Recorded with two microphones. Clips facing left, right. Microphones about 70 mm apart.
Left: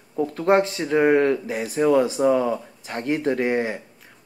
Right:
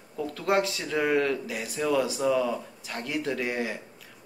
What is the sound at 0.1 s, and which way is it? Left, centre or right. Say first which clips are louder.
Speech: left 7 dB; left.